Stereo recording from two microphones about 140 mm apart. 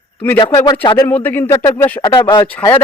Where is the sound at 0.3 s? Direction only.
35° left (ahead or behind).